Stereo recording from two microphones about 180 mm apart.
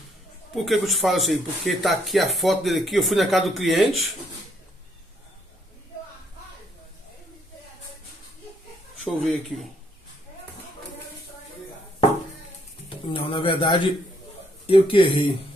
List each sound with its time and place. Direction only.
0.7 s speech: centre (ahead or behind)
9.0 s speech: centre (ahead or behind)
12.9 s speech: 30° left (ahead or behind)